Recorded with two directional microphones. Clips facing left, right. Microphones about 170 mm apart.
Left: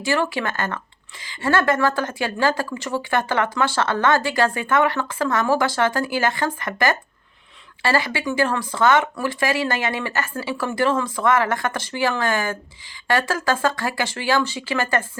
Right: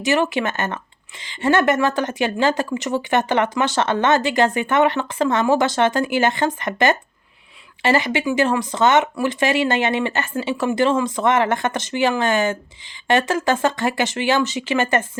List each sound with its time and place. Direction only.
0.0 s speech: 20° right (ahead or behind)